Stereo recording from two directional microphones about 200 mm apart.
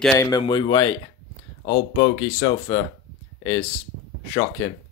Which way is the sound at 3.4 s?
10° left (ahead or behind).